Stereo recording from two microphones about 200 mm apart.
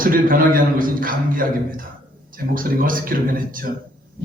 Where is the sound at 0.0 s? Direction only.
45° right (ahead or behind).